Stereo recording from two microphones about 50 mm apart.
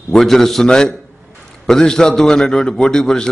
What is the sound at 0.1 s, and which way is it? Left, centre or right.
A man's voice, centre.